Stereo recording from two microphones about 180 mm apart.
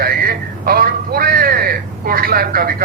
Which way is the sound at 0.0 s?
55° right (ahead or behind).